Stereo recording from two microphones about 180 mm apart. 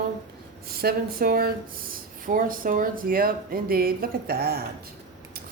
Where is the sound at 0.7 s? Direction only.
55° right (ahead or behind).